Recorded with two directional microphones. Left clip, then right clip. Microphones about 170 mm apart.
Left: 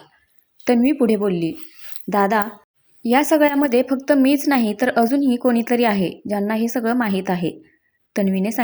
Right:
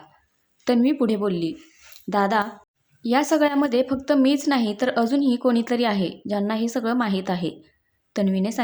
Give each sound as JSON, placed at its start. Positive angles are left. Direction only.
{"t": 0.6, "sound": "a woman's voice", "side_deg": 15}